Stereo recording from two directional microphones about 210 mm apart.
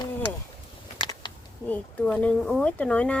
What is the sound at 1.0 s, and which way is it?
Typing, 20° left (ahead or behind).